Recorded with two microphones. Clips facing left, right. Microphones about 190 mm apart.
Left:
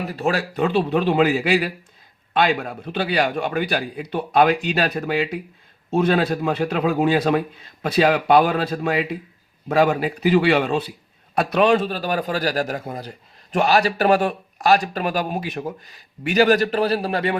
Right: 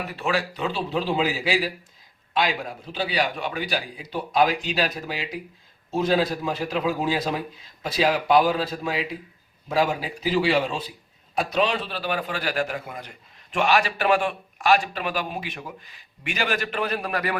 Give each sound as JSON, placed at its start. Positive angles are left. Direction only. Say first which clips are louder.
{"t": 0.1, "sound": "a man's voice", "louder": "left 3 dB", "side_deg": 40}